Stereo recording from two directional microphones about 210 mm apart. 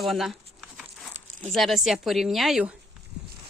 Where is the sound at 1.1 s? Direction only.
30° right (ahead or behind).